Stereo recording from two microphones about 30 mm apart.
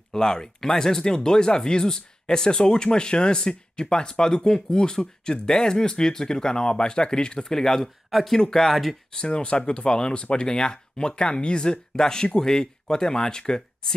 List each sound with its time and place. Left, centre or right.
0.1 s speech: left
8.6 s speech: centre
9.1 s speech: left